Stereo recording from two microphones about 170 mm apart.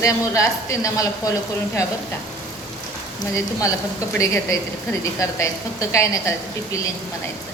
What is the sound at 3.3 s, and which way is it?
A woman's voice, 20° left (ahead or behind).